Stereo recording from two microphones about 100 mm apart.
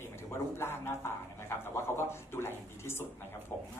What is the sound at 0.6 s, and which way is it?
Speech, 25° left (ahead or behind).